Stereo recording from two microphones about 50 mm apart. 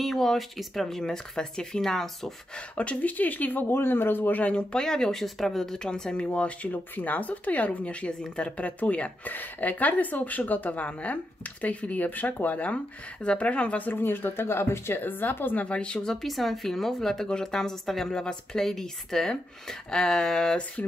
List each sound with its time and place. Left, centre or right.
0.0 s speech: centre
0.8 s a woman's voice: centre
2.8 s speech: left
4.4 s speech: left
13.9 s speech: left
15.0 s speech: left
15.6 s speech: left
16.1 s a woman's voice: centre